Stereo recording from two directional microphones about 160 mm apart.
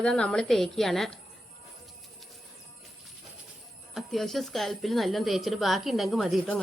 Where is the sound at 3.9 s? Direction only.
Centre (ahead or behind).